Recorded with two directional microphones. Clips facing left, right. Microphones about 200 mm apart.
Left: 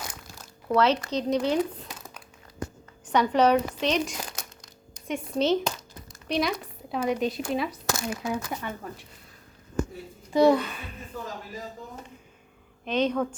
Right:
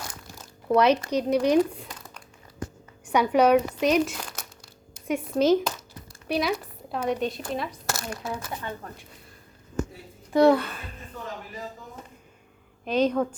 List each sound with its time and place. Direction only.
0.8 s speech: 10° right (ahead or behind)
1.9 s crumpling: 5° left (ahead or behind)
3.1 s speech: 10° right (ahead or behind)
10.3 s speech: centre (ahead or behind)
12.8 s a woman's voice: 5° right (ahead or behind)